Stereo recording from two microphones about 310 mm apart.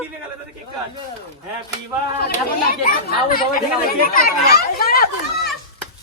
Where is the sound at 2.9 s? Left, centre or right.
Left.